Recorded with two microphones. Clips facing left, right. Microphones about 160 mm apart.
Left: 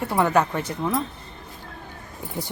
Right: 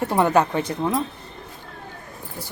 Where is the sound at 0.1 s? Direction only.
20° right (ahead or behind).